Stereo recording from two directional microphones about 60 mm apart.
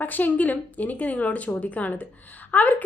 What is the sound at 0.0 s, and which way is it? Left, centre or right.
A woman's voice, left.